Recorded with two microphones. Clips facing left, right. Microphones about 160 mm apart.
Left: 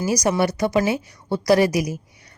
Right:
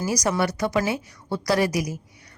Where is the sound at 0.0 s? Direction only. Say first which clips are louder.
Left 3 dB; 20° left (ahead or behind).